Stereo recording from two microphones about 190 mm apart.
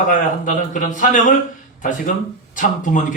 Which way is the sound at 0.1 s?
40° left (ahead or behind).